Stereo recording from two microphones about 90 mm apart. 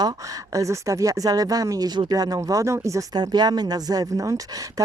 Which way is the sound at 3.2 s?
50° right (ahead or behind).